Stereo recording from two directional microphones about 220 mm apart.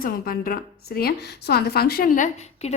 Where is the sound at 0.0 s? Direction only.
40° left (ahead or behind).